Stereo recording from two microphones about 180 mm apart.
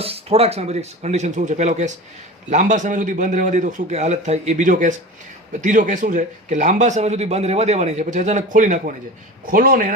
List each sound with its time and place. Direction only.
0.0 s a man's voice: 35° right (ahead or behind); by 9.9 s 50° right (ahead or behind)